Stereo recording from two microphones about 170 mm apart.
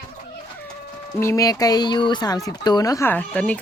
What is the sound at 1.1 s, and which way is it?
Speech, 15° left (ahead or behind).